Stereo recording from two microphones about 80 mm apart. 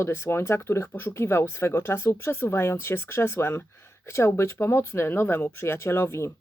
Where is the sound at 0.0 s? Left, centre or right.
Left.